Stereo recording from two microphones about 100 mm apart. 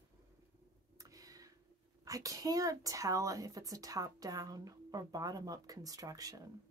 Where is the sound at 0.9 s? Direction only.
35° right (ahead or behind).